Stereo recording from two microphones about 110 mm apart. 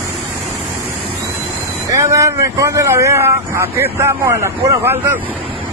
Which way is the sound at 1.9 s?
30° right (ahead or behind).